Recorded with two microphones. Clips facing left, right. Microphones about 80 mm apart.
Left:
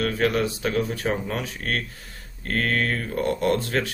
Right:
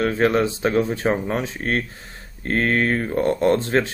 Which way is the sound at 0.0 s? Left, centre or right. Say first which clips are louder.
Right 4 dB; right.